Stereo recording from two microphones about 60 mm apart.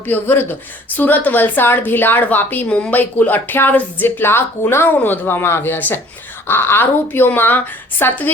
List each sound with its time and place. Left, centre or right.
0.0 s a woman's voice: left
2.6 s speech: centre
2.9 s a woman's voice: left